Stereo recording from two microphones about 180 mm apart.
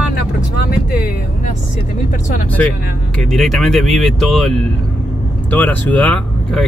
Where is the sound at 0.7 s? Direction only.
55° left (ahead or behind).